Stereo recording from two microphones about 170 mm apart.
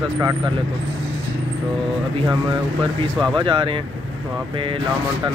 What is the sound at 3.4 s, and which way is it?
Speech, 30° right (ahead or behind).